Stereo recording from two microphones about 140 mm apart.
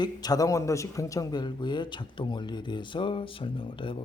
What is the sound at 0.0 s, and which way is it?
A man's voice, 30° left (ahead or behind).